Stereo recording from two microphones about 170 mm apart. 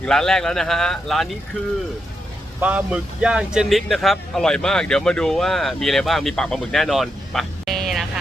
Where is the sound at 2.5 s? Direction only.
10° right (ahead or behind).